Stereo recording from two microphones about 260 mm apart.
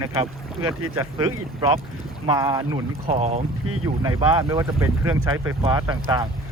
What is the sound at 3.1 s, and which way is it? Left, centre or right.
Speech, right.